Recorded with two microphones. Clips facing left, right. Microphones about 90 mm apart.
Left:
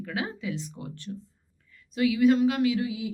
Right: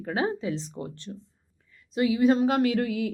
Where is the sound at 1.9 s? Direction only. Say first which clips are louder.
Even; 30° right (ahead or behind); by 3.1 s 55° right (ahead or behind).